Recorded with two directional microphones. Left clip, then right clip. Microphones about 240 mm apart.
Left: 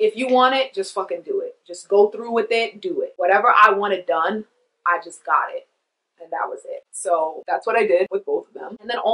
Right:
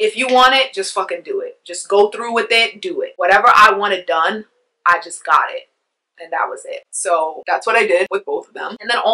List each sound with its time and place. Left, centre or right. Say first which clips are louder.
0.0 s speech: right 4 dB; centre